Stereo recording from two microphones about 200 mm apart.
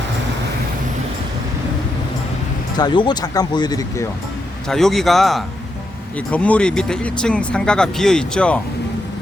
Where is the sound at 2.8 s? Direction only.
20° left (ahead or behind).